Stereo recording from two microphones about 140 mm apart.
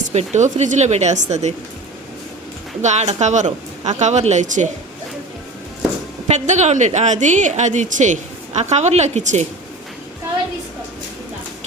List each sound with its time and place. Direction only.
0.1 s speech: 55° right (ahead or behind)
2.8 s speech: 55° right (ahead or behind)
6.2 s speech: 55° right (ahead or behind)